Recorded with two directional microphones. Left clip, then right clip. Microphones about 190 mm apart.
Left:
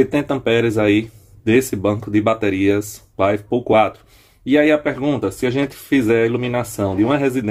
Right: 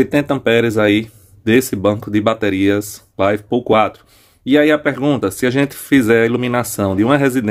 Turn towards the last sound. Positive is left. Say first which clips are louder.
# right 3 dB
turn(degrees=-30)  # may be behind; listen again after turning